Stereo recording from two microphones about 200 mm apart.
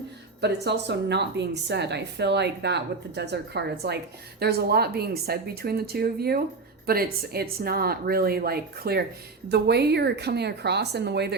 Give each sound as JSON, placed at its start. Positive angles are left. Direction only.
{"t": 0.4, "sound": "a woman's voice", "side_deg": -55}